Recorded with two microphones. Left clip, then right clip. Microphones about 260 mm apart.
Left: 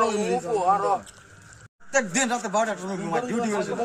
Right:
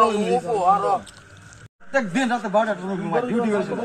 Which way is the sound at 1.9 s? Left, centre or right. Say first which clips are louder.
Right 2 dB; left.